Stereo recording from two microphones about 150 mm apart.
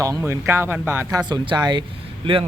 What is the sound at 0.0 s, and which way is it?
Speech, 20° right (ahead or behind).